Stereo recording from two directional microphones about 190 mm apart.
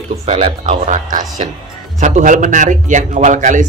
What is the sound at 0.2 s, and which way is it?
A man's voice, 35° right (ahead or behind).